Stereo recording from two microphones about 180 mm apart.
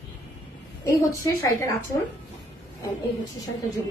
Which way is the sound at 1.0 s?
20° left (ahead or behind).